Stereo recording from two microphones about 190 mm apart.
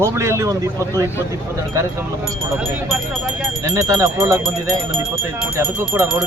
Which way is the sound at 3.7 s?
15° right (ahead or behind).